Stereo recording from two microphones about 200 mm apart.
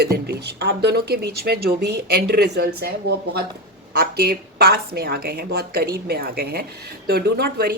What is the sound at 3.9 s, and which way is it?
A woman's voice, 50° right (ahead or behind).